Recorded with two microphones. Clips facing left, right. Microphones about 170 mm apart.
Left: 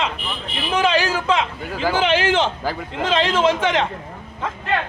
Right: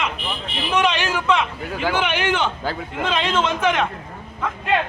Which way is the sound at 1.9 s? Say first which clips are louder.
Left 5 dB; 90° left.